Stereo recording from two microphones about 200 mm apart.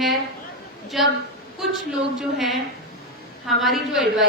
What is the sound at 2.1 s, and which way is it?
A woman's voice, centre (ahead or behind).